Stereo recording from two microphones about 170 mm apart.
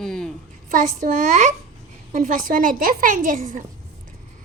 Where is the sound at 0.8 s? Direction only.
50° right (ahead or behind).